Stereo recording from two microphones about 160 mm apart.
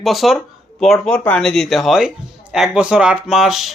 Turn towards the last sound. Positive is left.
turn(degrees=0)  # may be behind; listen again after turning